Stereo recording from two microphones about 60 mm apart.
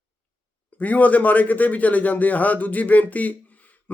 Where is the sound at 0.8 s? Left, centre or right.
Left.